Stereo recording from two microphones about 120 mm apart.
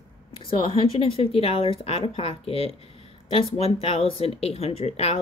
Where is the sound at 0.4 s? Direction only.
50° left (ahead or behind).